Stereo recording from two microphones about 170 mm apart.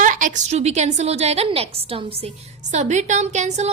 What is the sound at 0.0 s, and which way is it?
A woman's voice, 50° right (ahead or behind).